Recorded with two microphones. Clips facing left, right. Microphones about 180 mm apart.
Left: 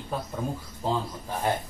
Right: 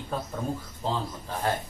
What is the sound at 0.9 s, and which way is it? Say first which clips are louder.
Speech: left 2 dB; 15° left (ahead or behind).